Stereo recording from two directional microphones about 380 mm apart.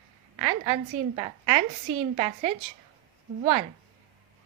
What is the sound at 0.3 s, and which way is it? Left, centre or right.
A woman's voice, centre.